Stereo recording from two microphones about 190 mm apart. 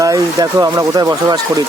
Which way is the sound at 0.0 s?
20° right (ahead or behind).